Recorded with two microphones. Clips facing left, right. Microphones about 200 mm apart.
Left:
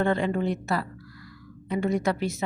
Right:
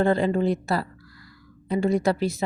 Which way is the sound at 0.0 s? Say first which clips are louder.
Right 4 dB; 35° right (ahead or behind).